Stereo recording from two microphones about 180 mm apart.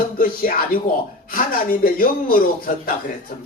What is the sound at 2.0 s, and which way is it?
Speech, 50° left (ahead or behind).